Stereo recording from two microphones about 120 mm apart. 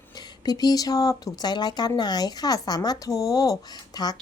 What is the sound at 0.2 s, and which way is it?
A woman's voice, 35° left (ahead or behind).